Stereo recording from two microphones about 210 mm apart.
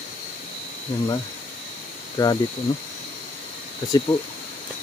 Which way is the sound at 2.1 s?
20° left (ahead or behind).